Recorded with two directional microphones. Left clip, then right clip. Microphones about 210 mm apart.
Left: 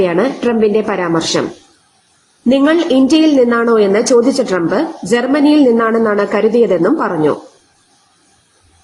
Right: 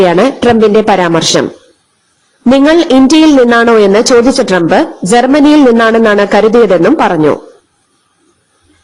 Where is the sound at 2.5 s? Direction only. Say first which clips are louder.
Right 5 dB; 45° right (ahead or behind).